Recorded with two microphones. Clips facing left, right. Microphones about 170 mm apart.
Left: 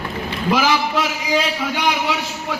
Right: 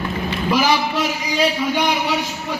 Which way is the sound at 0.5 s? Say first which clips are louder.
Even; 90° left.